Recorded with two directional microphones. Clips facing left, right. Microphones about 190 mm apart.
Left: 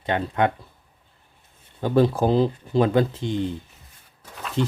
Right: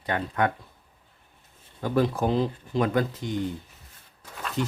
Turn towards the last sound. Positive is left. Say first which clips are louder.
# left 4 dB
turn(degrees=0)  # may be behind; listen again after turning